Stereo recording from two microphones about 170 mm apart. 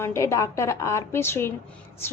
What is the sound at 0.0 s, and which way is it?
A woman's voice, 15° left (ahead or behind).